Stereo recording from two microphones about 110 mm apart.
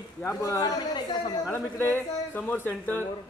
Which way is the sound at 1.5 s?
20° left (ahead or behind).